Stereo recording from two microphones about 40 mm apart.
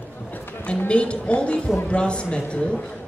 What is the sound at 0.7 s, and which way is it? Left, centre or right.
A man's voice, left.